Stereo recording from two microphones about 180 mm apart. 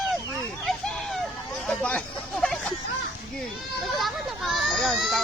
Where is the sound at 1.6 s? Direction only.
5° left (ahead or behind).